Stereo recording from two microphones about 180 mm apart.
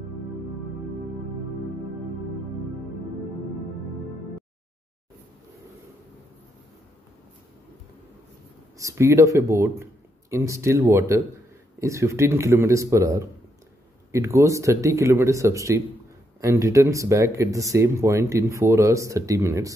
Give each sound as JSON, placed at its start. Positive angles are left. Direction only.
{"t": 8.7, "sound": "speech", "side_deg": -15}